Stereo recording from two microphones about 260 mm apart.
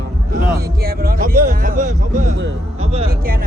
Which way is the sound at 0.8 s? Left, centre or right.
Right.